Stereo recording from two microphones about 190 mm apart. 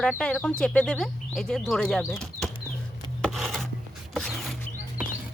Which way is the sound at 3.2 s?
Centre (ahead or behind).